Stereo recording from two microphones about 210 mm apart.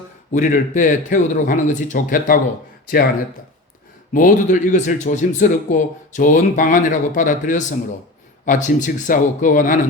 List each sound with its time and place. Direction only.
0.3 s a man's voice: 40° left (ahead or behind)
4.1 s a man's voice: 40° left (ahead or behind)